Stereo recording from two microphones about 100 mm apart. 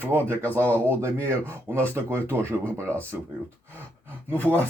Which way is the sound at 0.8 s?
30° right (ahead or behind).